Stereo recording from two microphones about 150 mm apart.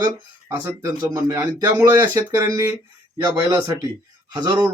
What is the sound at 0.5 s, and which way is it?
Speech, 20° right (ahead or behind).